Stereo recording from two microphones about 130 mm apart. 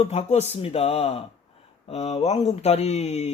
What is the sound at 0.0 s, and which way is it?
Speech, 60° left (ahead or behind).